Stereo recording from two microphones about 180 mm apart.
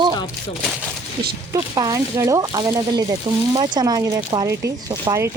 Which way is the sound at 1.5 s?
20° right (ahead or behind).